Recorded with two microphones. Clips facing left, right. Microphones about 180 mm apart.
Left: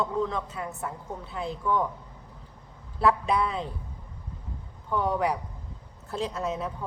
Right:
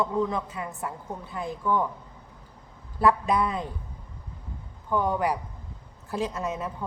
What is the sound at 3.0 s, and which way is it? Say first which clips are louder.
Speech: right 1 dB; centre (ahead or behind).